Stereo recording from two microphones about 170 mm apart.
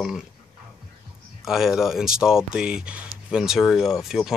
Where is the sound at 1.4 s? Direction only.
5° right (ahead or behind).